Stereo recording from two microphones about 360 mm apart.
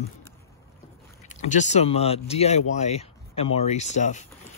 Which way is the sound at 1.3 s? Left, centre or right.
Centre.